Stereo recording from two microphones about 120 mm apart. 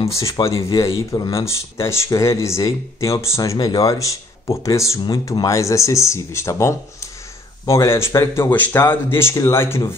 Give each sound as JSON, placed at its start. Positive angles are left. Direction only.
{"t": 0.1, "sound": "speech", "side_deg": 25}